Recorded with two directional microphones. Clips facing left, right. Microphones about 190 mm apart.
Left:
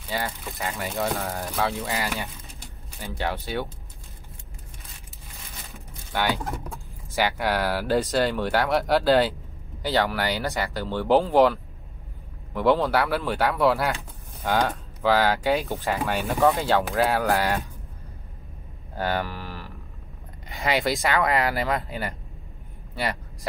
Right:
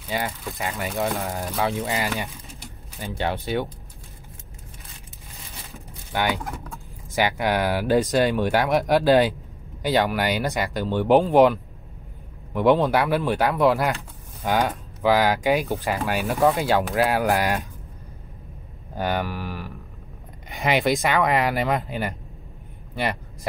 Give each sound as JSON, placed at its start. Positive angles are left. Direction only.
{"t": 0.1, "sound": "speech", "side_deg": -15}
{"t": 6.1, "sound": "speech", "side_deg": -15}
{"t": 18.9, "sound": "speech", "side_deg": -15}